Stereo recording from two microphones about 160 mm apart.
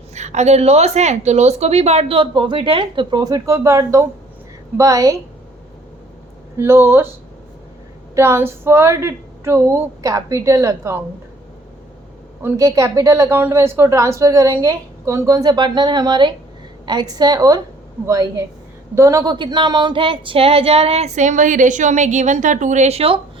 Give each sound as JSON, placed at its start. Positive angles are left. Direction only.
{"t": 0.1, "sound": "a woman's voice", "side_deg": -45}
{"t": 6.6, "sound": "a woman's voice", "side_deg": -15}
{"t": 8.1, "sound": "a woman's voice", "side_deg": -15}
{"t": 12.4, "sound": "a woman's voice", "side_deg": -15}